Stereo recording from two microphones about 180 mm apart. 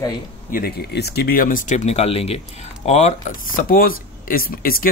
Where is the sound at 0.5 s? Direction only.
55° left (ahead or behind).